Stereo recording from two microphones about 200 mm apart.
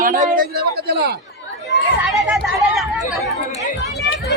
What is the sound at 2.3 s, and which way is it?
Speech, centre (ahead or behind).